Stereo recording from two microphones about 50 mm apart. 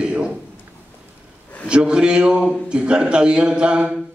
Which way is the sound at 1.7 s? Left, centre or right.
Centre.